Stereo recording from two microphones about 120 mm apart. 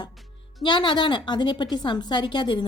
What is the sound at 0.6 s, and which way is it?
A woman's voice, 40° left (ahead or behind).